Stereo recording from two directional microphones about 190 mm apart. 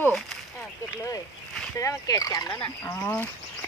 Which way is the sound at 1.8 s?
15° left (ahead or behind).